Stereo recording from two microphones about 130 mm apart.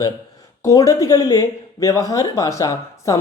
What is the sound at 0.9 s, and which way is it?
Speech, 25° left (ahead or behind).